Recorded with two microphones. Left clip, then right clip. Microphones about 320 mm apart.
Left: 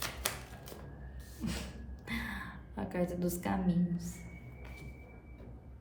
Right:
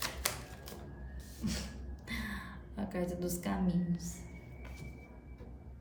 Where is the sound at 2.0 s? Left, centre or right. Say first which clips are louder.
Left 2 dB; centre.